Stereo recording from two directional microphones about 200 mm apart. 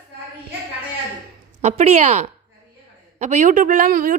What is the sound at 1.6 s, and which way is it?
A woman's voice, 35° right (ahead or behind).